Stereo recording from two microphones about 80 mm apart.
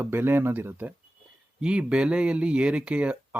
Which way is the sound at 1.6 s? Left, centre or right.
Centre.